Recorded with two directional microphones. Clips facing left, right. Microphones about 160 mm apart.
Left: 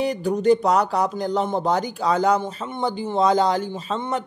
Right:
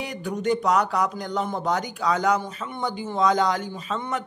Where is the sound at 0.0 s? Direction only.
35° left (ahead or behind).